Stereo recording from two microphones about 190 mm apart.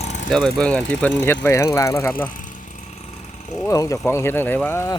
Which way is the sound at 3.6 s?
15° left (ahead or behind).